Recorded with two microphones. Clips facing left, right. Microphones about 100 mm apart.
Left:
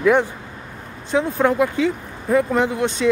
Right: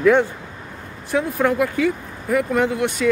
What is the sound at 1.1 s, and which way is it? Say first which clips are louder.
Speech: left 1 dB; 20° left (ahead or behind).